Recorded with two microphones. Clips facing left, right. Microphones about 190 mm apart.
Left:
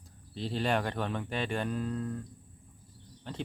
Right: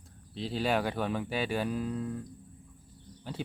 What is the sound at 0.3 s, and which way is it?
Speech, centre (ahead or behind).